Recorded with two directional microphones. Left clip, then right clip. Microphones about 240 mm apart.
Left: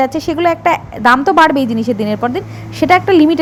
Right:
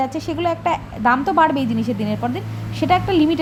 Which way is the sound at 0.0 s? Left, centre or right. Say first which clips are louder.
Left 8 dB; left.